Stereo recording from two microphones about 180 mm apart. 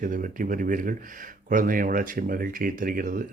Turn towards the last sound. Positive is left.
turn(degrees=-50)  # may be behind; listen again after turning